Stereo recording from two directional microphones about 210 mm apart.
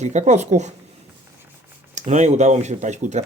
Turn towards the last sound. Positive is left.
turn(degrees=-35)  # may be behind; listen again after turning